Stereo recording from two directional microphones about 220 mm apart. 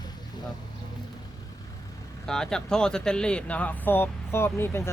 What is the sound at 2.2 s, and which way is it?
Speech, 5° left (ahead or behind).